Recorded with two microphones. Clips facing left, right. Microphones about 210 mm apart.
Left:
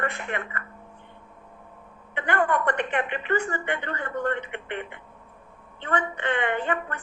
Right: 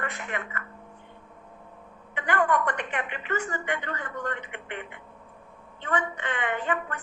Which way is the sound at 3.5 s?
60° left (ahead or behind).